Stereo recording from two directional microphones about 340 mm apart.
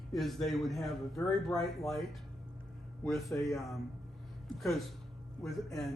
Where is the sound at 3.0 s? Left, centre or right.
Centre.